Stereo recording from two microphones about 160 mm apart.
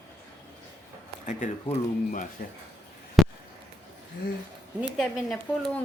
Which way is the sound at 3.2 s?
Centre (ahead or behind).